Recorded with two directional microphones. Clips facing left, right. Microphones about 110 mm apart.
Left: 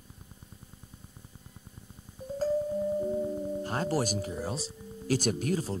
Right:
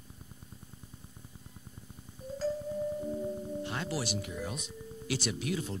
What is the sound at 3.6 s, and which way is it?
Speech, 40° left (ahead or behind).